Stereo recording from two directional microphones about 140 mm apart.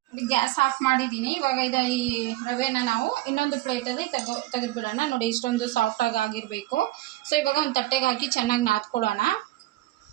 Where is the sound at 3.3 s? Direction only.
90° left.